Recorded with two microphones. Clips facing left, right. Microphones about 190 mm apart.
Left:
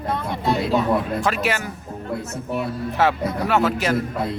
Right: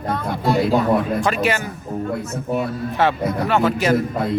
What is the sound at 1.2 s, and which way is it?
Speech, centre (ahead or behind).